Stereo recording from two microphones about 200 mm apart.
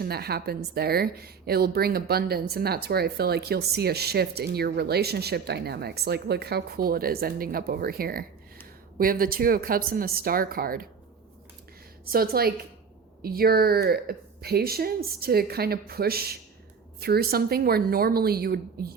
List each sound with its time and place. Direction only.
0.0 s a woman's voice: 50° right (ahead or behind)
12.1 s a woman's voice: 50° right (ahead or behind)